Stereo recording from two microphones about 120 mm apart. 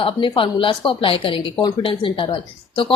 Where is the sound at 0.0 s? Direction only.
45° left (ahead or behind).